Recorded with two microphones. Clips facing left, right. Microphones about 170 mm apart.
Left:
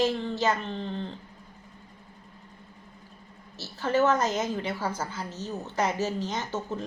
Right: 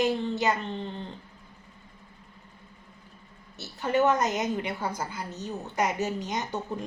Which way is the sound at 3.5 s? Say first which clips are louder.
Even; 15° right (ahead or behind).